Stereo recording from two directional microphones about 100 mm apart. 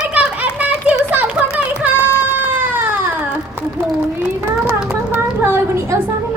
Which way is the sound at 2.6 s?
15° right (ahead or behind).